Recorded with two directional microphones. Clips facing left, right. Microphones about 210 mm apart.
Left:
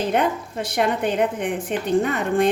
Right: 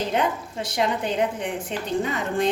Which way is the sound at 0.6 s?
55° left (ahead or behind).